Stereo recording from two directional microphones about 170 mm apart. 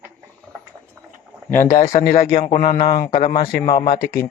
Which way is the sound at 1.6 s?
55° left (ahead or behind).